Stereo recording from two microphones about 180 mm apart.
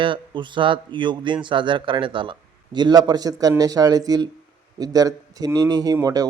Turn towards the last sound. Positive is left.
turn(degrees=-20)  # may be behind; listen again after turning